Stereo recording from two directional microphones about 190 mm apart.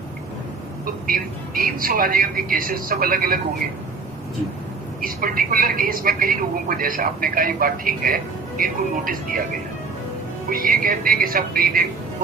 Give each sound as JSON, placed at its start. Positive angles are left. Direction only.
{"t": 1.0, "sound": "speech", "side_deg": -50}
{"t": 4.9, "sound": "speech", "side_deg": -50}
{"t": 10.5, "sound": "speech", "side_deg": -50}